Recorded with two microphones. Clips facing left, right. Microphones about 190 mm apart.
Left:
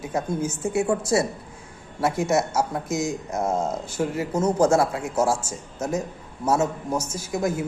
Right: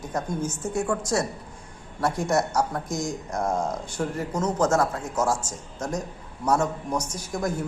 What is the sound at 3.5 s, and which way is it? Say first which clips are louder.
Speech: left 2 dB; 25° left (ahead or behind).